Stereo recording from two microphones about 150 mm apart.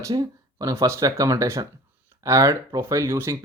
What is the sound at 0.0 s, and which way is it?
Speech, 25° right (ahead or behind).